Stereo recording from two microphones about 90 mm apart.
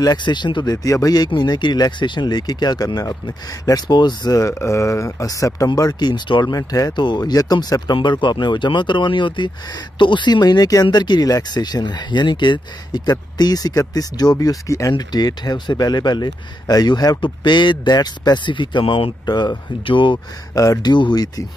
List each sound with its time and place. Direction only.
0.0 s speech: 55° left (ahead or behind)
0.7 s speech: 40° left (ahead or behind); by 6.4 s 60° left (ahead or behind)
6.4 s speech: 45° left (ahead or behind)
6.9 s speech: 55° left (ahead or behind); by 19.1 s 70° left (ahead or behind)
19.2 s speech: 50° left (ahead or behind)
19.8 s speech: 65° left (ahead or behind)
20.5 s speech: 40° left (ahead or behind)